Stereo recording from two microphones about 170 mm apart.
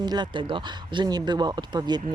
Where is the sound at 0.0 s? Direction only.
25° right (ahead or behind).